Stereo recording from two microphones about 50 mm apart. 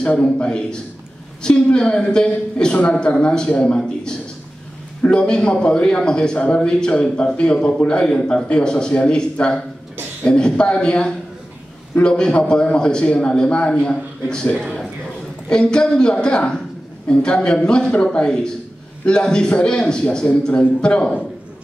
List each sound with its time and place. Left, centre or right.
0.0 s a man's voice: left
14.6 s a sound: centre
15.5 s a man's voice: centre